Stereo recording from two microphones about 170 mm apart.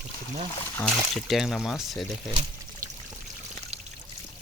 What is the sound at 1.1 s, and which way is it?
Speech, centre (ahead or behind).